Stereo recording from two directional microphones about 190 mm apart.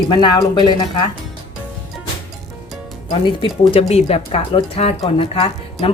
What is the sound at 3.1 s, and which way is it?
Speech, 25° left (ahead or behind).